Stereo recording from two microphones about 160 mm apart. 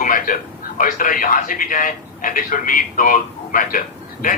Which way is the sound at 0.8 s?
55° left (ahead or behind).